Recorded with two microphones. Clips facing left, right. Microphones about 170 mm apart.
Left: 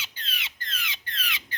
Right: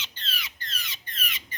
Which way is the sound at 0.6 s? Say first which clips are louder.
Left 3 dB; 55° left (ahead or behind).